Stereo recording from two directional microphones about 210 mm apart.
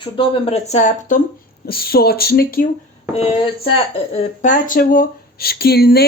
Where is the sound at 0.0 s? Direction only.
25° left (ahead or behind); by 2.6 s 45° left (ahead or behind).